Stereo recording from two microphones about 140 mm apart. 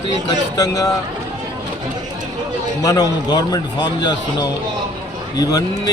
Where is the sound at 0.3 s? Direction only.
25° left (ahead or behind).